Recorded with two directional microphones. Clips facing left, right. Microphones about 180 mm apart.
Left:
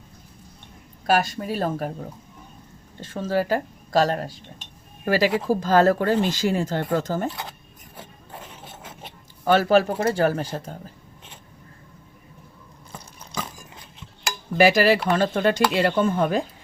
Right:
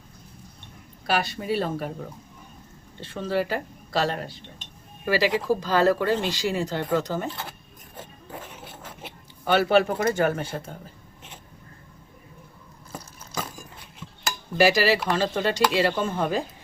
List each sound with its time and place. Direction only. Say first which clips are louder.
1.0 s speech: left 4 dB; 45° left (ahead or behind)
3.0 s speech: left 2 dB; 45° left (ahead or behind)
9.5 s speech: left 2 dB; 40° left (ahead or behind)
14.6 s speech: left 3 dB; 55° left (ahead or behind)